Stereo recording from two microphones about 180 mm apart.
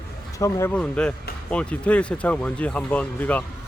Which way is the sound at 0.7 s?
5° left (ahead or behind).